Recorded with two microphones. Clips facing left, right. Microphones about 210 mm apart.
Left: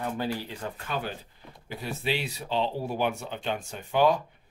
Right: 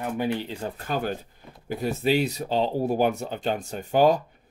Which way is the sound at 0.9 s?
45° right (ahead or behind).